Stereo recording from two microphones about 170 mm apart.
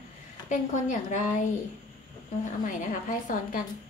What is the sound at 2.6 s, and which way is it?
Speech, 50° left (ahead or behind).